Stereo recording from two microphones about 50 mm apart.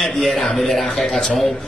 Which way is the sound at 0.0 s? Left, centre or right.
Centre.